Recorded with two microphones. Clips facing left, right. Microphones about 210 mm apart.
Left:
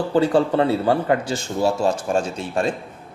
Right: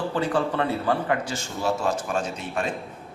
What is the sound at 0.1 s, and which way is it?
A man's voice, 35° left (ahead or behind).